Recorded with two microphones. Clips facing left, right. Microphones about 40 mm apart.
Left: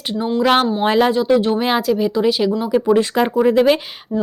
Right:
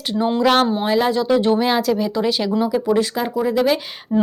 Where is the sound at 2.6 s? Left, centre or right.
Left.